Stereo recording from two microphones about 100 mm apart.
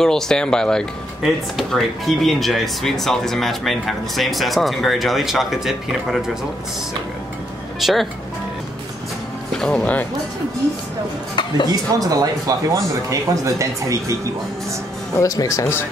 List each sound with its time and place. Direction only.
0.0 s speech: 5° left (ahead or behind)
7.8 s speech: centre (ahead or behind)
9.6 s speech: 10° left (ahead or behind)
11.3 s a sound: 50° left (ahead or behind)
12.0 s speech: 35° right (ahead or behind)
15.1 s speech: 35° left (ahead or behind)